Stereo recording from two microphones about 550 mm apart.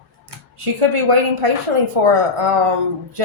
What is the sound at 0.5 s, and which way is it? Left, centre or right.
A woman's voice, right.